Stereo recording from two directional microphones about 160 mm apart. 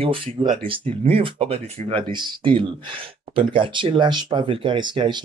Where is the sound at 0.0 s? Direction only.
35° right (ahead or behind).